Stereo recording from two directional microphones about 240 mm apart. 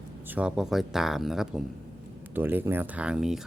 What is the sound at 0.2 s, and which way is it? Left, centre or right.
Speech, centre.